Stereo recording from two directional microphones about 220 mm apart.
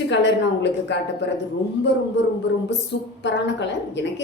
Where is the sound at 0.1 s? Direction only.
55° left (ahead or behind).